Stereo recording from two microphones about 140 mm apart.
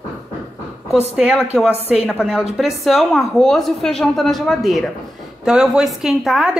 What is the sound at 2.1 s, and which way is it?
A woman's voice, centre (ahead or behind).